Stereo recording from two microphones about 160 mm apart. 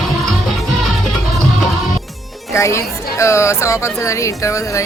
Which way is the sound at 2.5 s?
15° left (ahead or behind).